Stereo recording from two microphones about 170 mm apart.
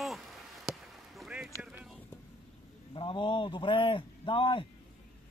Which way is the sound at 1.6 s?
5° right (ahead or behind).